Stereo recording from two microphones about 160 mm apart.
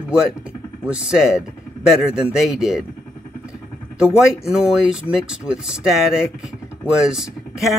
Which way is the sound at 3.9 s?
5° right (ahead or behind).